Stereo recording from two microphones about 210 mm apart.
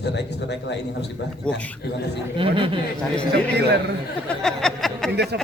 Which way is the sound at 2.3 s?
25° right (ahead or behind).